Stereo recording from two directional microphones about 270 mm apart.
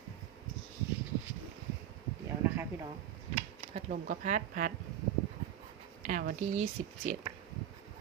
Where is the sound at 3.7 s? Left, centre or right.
Right.